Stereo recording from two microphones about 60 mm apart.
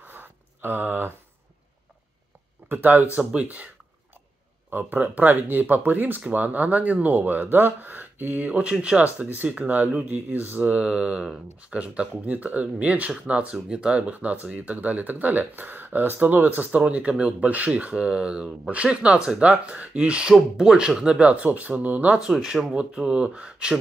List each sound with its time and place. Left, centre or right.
0.0 s a sound: right
2.7 s speech: right
4.6 s speech: right
16.8 s speech: centre
22.1 s speech: centre